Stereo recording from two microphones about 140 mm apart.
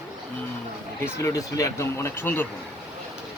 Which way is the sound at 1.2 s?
20° left (ahead or behind).